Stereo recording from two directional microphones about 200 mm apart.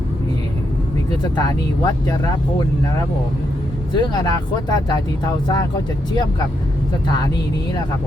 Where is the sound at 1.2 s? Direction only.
20° left (ahead or behind).